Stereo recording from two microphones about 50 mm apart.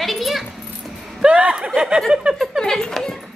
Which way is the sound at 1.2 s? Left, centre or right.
Right.